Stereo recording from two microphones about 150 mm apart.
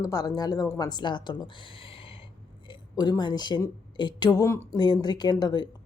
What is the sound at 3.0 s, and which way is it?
Speech, 30° left (ahead or behind).